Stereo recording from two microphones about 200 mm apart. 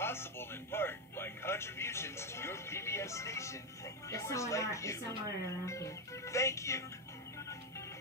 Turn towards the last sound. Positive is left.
turn(degrees=15)  # may be behind; listen again after turning